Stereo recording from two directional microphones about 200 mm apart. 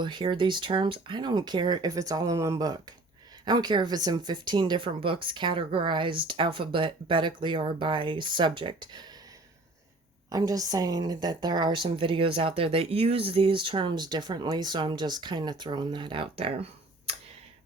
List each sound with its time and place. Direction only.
0.0 s a woman's voice: 25° right (ahead or behind)
10.2 s a woman's voice: 15° right (ahead or behind)